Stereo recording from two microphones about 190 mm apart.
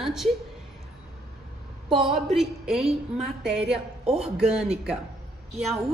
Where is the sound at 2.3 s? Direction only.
5° right (ahead or behind).